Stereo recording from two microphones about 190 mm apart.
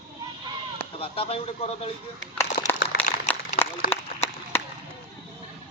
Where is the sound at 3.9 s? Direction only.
10° left (ahead or behind).